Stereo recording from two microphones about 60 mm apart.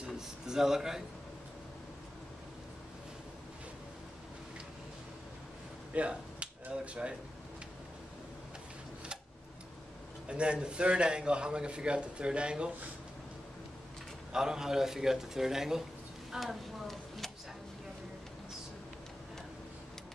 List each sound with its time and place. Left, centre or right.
0.0 s a sound: centre
5.9 s speech: centre
10.2 s a man's voice: centre
14.3 s a man's voice: centre